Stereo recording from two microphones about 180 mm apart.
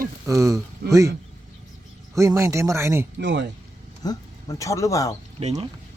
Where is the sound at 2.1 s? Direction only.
15° right (ahead or behind).